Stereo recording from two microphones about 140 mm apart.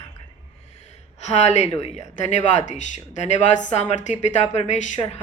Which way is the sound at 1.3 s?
55° left (ahead or behind).